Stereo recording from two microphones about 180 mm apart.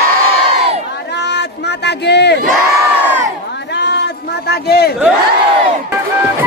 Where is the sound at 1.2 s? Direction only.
70° left (ahead or behind).